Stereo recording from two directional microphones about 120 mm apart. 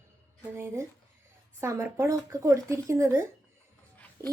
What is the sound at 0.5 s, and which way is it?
Speech, 25° right (ahead or behind).